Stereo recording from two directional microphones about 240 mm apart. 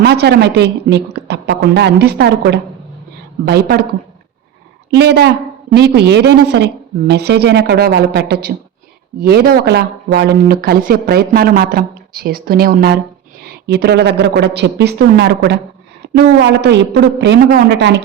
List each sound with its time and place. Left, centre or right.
0.0 s a woman's voice: right
4.9 s a woman's voice: right